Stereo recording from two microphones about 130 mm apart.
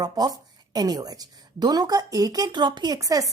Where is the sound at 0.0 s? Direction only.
30° right (ahead or behind).